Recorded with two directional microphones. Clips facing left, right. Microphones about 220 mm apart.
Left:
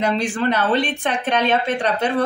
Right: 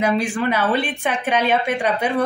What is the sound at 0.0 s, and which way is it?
A woman's voice, 10° right (ahead or behind).